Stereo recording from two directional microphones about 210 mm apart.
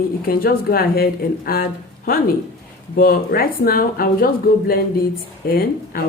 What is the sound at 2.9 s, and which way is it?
Speech, 45° left (ahead or behind).